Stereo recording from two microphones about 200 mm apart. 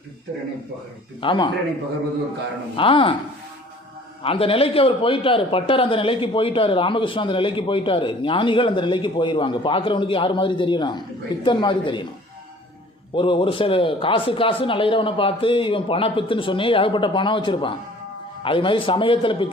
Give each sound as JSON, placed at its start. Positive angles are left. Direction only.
{"t": 1.2, "sound": "a man's voice", "side_deg": 25}
{"t": 2.7, "sound": "a man's voice", "side_deg": 25}
{"t": 4.2, "sound": "a man's voice", "side_deg": 30}
{"t": 13.1, "sound": "a man's voice", "side_deg": 25}